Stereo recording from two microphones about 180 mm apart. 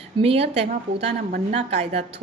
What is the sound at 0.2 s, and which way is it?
A woman's voice, 35° right (ahead or behind).